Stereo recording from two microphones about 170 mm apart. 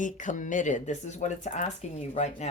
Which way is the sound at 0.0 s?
50° left (ahead or behind).